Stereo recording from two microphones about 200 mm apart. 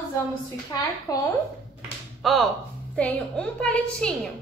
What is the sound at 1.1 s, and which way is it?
Speech, 15° left (ahead or behind).